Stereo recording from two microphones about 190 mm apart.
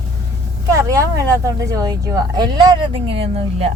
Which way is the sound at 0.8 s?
15° right (ahead or behind).